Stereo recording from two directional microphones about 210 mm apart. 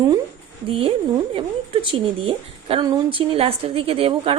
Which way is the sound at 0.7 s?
25° right (ahead or behind).